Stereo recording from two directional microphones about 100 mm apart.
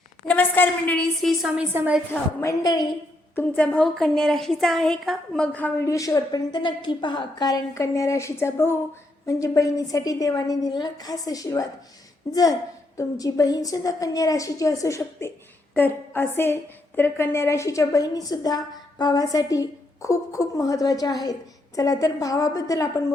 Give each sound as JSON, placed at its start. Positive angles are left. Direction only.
{"t": 0.3, "sound": "a woman's voice", "side_deg": 20}
{"t": 0.9, "sound": "a woman's voice", "side_deg": 0}
{"t": 2.4, "sound": "a woman's voice", "side_deg": 35}
{"t": 3.3, "sound": "a woman's voice", "side_deg": 15}
{"t": 5.8, "sound": "a woman's voice", "side_deg": 35}
{"t": 15.7, "sound": "a woman's voice", "side_deg": 20}